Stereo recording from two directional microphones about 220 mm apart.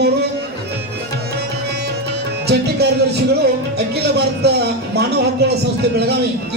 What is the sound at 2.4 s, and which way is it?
Speech, 50° right (ahead or behind).